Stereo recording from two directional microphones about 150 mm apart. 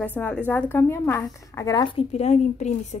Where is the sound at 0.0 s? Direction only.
10° left (ahead or behind); by 2.0 s 30° left (ahead or behind).